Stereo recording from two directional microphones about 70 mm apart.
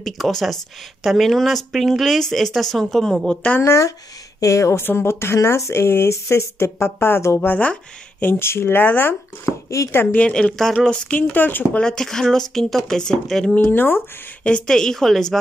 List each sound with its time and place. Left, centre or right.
0.0 s speech: centre
3.6 s speech: left
4.8 s speech: left
7.3 s speech: left
9.5 s speech: left
10.1 s speech: centre
11.8 s speech: centre
13.6 s speech: left
14.4 s a woman's voice: centre